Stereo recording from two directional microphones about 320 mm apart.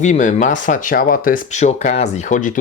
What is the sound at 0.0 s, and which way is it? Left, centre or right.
Speech, left.